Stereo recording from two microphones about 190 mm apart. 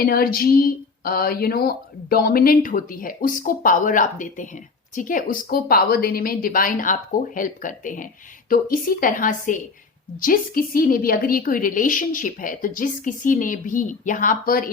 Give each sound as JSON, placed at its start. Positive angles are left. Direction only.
{"t": 0.0, "sound": "speech", "side_deg": 50}